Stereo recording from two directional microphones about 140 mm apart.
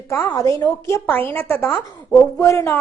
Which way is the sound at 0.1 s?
20° left (ahead or behind).